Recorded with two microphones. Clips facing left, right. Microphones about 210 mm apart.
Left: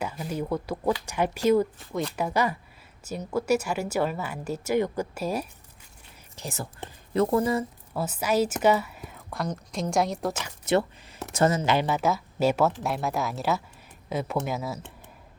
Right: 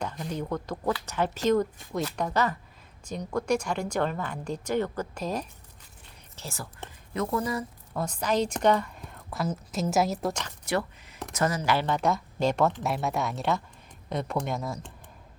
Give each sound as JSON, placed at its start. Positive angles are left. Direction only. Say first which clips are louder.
{"t": 0.0, "sound": "speech", "louder": "left 2 dB", "side_deg": 5}
{"t": 7.1, "sound": "speech", "louder": "left 6 dB", "side_deg": 30}
{"t": 7.9, "sound": "a woman's voice", "louder": "left 2 dB", "side_deg": 5}
{"t": 10.7, "sound": "speech", "louder": "left 5 dB", "side_deg": 25}
{"t": 11.9, "sound": "a woman's voice", "louder": "left 1 dB", "side_deg": 5}